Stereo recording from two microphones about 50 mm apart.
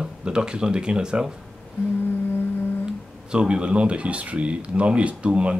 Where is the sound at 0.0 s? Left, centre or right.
Centre.